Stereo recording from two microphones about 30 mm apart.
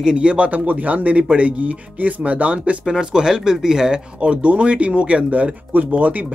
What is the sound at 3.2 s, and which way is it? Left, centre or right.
Speech, centre.